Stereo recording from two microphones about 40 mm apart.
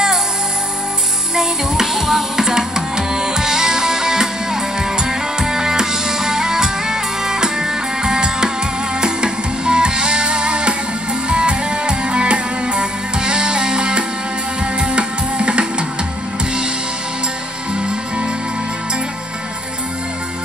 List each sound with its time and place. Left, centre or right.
1.3 s music: centre